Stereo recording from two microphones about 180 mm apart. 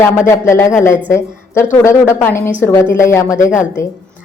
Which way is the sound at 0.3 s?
15° left (ahead or behind).